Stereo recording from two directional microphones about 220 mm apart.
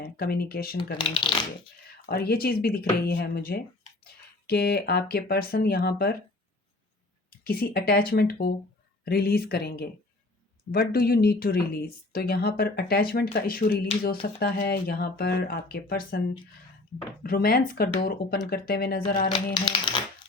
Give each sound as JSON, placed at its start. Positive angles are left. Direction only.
{"t": 0.0, "sound": "a woman's voice", "side_deg": 45}
{"t": 0.9, "sound": "speech", "side_deg": 20}
{"t": 2.0, "sound": "a woman's voice", "side_deg": 45}
{"t": 7.3, "sound": "a woman's voice", "side_deg": 45}
{"t": 17.2, "sound": "a woman's voice", "side_deg": 40}
{"t": 19.3, "sound": "speech", "side_deg": 20}